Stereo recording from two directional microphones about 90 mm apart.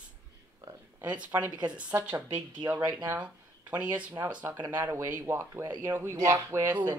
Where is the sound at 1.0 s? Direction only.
15° right (ahead or behind).